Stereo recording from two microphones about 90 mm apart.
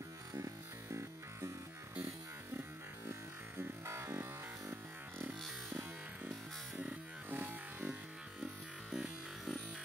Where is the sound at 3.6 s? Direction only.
30° right (ahead or behind).